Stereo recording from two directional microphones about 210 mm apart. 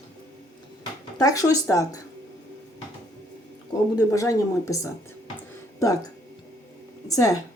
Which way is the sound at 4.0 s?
15° left (ahead or behind).